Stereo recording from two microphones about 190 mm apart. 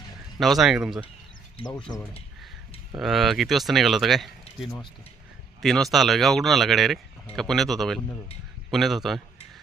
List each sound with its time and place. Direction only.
0.3 s speech: centre (ahead or behind)
1.6 s speech: 30° left (ahead or behind)
2.9 s speech: centre (ahead or behind)